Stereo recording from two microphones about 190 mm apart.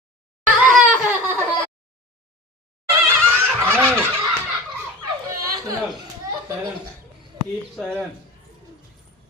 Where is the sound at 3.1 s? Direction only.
10° right (ahead or behind).